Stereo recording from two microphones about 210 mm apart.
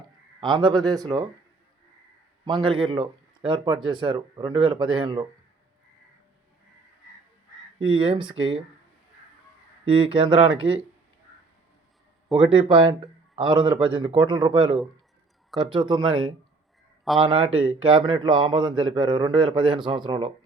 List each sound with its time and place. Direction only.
0.3 s speech: 20° right (ahead or behind)
2.4 s speech: 20° right (ahead or behind)
7.8 s speech: 25° right (ahead or behind)
9.8 s speech: 25° right (ahead or behind)
10.6 s speech: 5° right (ahead or behind)
12.3 s speech: 25° right (ahead or behind)
17.5 s speech: 75° right (ahead or behind)
17.8 s speech: 25° right (ahead or behind)